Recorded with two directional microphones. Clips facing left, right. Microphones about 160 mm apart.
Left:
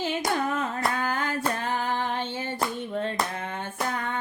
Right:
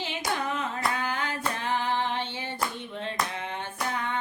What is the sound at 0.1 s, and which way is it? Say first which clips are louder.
Hands: left 1 dB; 45° left (ahead or behind).